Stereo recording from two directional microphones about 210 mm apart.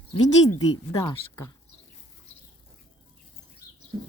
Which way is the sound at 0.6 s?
20° left (ahead or behind).